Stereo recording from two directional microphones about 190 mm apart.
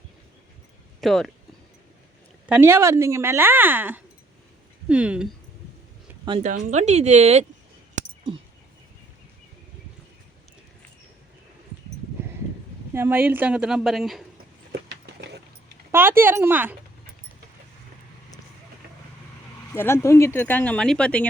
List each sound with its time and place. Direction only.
1.0 s speech: centre (ahead or behind)
2.5 s a woman's voice: 10° right (ahead or behind)
6.4 s speech: 40° right (ahead or behind)
12.9 s speech: 10° right (ahead or behind)
14.7 s clip-clop: 65° right (ahead or behind)
15.9 s a woman's voice: 10° right (ahead or behind)
19.7 s speech: 15° left (ahead or behind)